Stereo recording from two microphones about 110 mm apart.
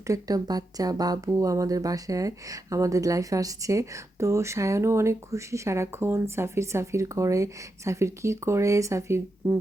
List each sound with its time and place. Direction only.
0.1 s speech: 35° right (ahead or behind)